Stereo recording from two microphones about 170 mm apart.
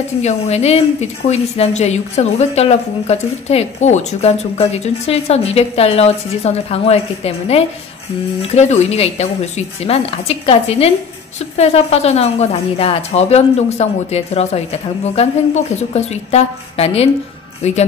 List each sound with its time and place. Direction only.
0.2 s a woman's voice: 40° left (ahead or behind)